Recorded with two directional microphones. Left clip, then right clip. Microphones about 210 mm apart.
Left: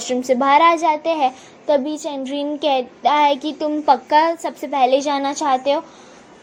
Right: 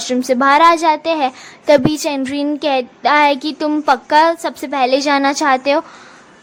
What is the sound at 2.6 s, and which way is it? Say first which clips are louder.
A woman's voice: left 1 dB; 15° right (ahead or behind).